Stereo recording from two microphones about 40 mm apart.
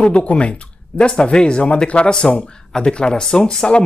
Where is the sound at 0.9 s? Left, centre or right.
Left.